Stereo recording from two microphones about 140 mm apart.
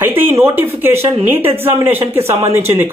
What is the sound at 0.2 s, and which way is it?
Speech, 15° right (ahead or behind).